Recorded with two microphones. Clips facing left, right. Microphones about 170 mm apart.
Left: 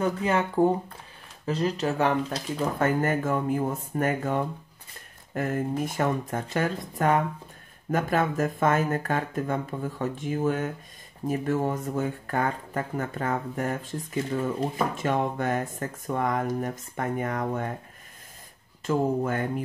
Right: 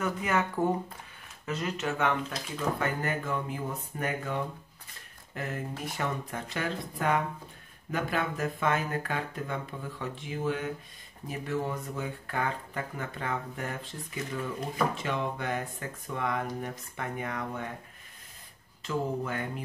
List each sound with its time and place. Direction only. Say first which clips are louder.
0.0 s speech: left 4 dB; 30° left (ahead or behind); by 17.6 s 45° left (ahead or behind)
18.9 s speech: left 7 dB; 45° left (ahead or behind)